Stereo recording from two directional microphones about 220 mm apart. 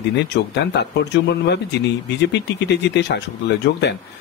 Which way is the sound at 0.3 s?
50° left (ahead or behind).